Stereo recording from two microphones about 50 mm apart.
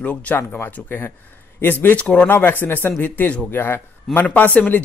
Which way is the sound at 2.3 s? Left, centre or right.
Left.